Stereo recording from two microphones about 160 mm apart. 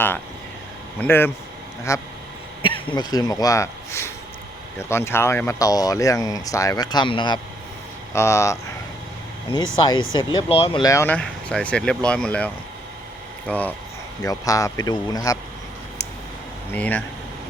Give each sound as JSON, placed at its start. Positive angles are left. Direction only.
{"t": 0.9, "sound": "speech", "side_deg": 15}
{"t": 2.6, "sound": "speech", "side_deg": 35}
{"t": 8.1, "sound": "speech", "side_deg": 15}
{"t": 10.2, "sound": "speech", "side_deg": 30}
{"t": 10.9, "sound": "speech", "side_deg": 10}
{"t": 13.5, "sound": "speech", "side_deg": 10}
{"t": 14.2, "sound": "speech", "side_deg": 20}
{"t": 16.7, "sound": "speech", "side_deg": 10}